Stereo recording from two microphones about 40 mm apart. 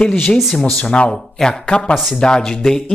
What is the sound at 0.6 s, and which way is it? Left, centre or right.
Speech, centre.